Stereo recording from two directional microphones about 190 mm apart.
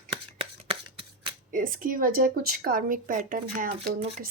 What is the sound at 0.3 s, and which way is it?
Shuffling cards, 30° right (ahead or behind).